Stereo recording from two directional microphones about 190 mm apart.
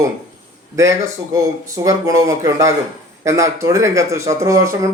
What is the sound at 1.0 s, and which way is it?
Speech, 15° right (ahead or behind).